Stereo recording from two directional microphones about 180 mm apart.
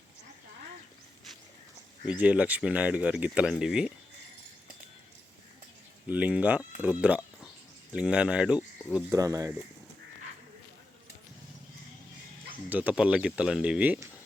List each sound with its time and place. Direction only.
2.0 s speech: 5° right (ahead or behind)
6.1 s speech: 10° right (ahead or behind)
9.1 s speech: 20° right (ahead or behind)
12.6 s speech: 10° right (ahead or behind)